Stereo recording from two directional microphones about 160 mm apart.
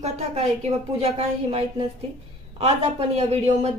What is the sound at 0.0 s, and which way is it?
Speech, 45° right (ahead or behind).